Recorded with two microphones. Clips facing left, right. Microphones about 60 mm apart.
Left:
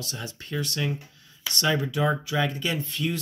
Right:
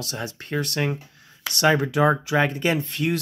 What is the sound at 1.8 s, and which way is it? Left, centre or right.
Speech, right.